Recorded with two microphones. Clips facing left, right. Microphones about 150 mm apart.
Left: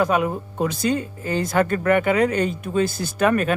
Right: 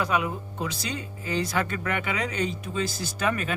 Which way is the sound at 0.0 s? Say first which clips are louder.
Left 6 dB; 50° left (ahead or behind).